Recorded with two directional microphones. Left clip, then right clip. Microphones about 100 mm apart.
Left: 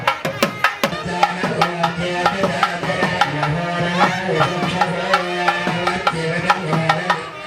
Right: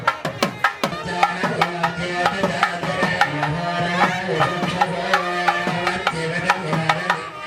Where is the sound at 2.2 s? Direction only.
55° right (ahead or behind).